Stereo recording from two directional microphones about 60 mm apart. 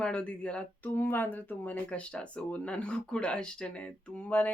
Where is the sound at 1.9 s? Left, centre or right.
Centre.